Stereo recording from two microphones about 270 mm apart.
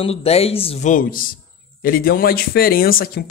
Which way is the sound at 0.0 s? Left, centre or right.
Left.